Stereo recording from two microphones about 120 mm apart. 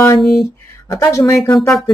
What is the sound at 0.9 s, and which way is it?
Speech, 30° left (ahead or behind).